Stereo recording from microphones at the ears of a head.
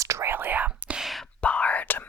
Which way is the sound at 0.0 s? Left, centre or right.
Right.